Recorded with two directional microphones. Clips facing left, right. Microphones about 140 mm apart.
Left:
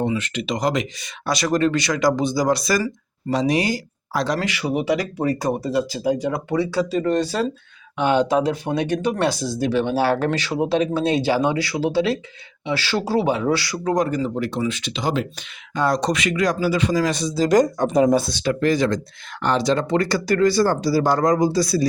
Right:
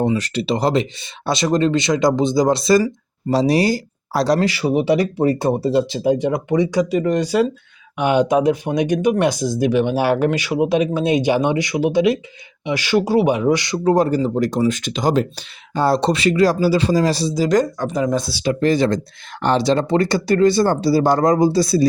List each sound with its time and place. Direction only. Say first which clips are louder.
0.0 s speech: right 4 dB; 35° right (ahead or behind)
15.7 s speech: right 3 dB; 30° right (ahead or behind)
17.7 s speech: left 3 dB; 20° left (ahead or behind)
18.2 s speech: even; 5° right (ahead or behind)
18.4 s speech: right 5 dB; 30° right (ahead or behind)